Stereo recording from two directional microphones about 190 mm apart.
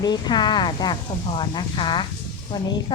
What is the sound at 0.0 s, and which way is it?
A woman's voice, 20° left (ahead or behind).